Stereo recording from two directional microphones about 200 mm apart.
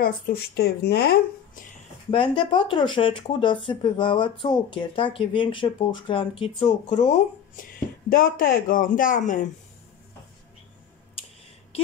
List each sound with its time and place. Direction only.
0.0 s speech: 50° left (ahead or behind)
2.0 s speech: 25° left (ahead or behind)
7.5 s speech: 45° left (ahead or behind)